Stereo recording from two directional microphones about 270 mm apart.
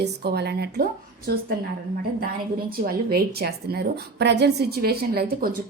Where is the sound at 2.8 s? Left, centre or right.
Right.